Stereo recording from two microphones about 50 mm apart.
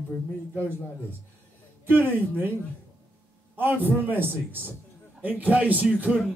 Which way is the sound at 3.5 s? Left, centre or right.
Right.